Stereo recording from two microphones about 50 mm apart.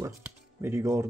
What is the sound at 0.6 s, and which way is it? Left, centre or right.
Speech, right.